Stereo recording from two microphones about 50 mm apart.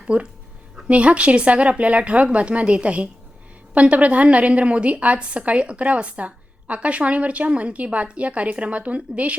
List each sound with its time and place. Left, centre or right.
0.1 s a woman's voice: right